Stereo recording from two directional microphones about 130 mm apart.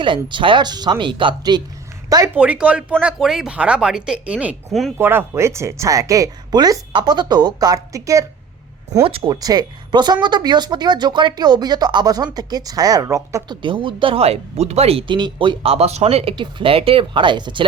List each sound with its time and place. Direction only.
0.0 s speech: 40° right (ahead or behind)
2.3 s a woman's voice: 10° right (ahead or behind)
4.7 s speech: centre (ahead or behind)
4.9 s speech: 15° right (ahead or behind)
9.0 s speech: 45° right (ahead or behind)
9.3 s speech: 30° right (ahead or behind); by 16.3 s 55° right (ahead or behind)
16.3 s speech: 40° right (ahead or behind)